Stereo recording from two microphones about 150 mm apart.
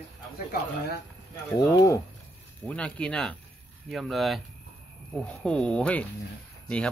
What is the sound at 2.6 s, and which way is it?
Speech, 10° left (ahead or behind).